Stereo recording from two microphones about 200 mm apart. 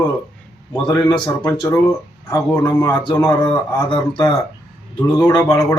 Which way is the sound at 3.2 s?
5° left (ahead or behind).